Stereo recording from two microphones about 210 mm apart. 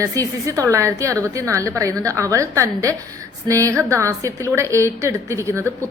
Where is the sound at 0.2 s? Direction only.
15° right (ahead or behind).